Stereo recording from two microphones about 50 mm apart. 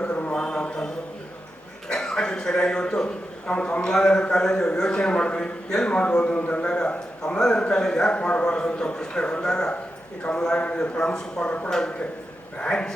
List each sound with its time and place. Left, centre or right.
0.0 s mantra: left
1.9 s a man's voice: centre